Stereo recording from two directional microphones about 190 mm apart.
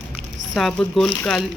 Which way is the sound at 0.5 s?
5° left (ahead or behind).